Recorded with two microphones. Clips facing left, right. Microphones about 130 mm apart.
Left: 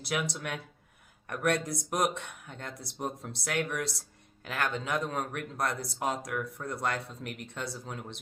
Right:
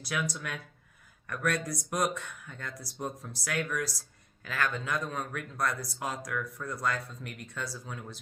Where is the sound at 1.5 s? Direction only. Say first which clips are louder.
Left 3 dB; 25° left (ahead or behind).